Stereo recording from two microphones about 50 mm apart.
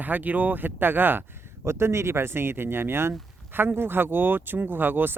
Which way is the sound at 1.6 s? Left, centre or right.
Right.